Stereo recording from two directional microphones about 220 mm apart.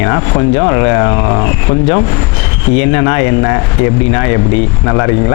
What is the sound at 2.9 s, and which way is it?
Speech, 20° left (ahead or behind).